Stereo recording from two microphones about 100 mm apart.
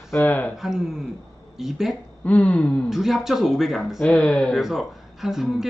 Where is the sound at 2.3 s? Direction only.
15° left (ahead or behind).